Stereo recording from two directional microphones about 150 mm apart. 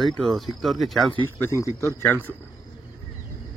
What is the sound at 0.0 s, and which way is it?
Speech, centre (ahead or behind).